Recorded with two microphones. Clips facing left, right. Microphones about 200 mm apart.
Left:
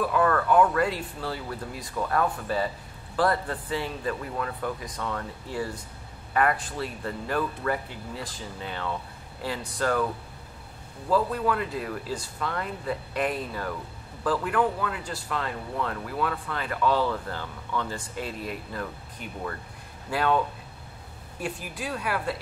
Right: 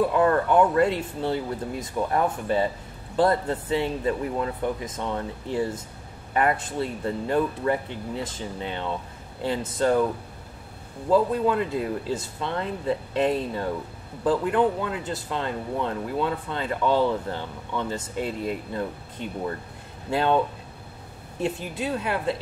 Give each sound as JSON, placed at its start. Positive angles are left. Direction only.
{"t": 0.0, "sound": "speech", "side_deg": -25}
{"t": 11.1, "sound": "speech", "side_deg": -25}